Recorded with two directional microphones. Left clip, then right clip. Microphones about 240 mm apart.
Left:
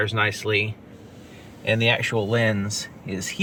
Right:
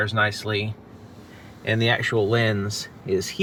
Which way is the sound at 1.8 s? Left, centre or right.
Right.